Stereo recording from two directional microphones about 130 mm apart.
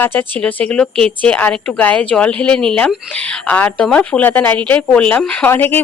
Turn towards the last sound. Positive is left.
turn(degrees=15)  # may be behind; listen again after turning